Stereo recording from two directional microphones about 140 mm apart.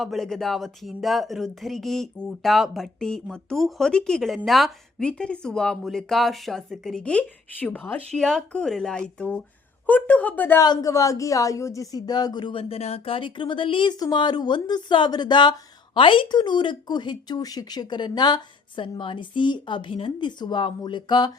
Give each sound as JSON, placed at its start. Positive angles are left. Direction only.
{"t": 0.0, "sound": "speech", "side_deg": 0}
{"t": 10.6, "sound": "speech", "side_deg": 25}